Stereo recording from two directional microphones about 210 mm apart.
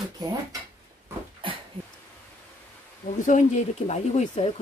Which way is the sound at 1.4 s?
25° right (ahead or behind).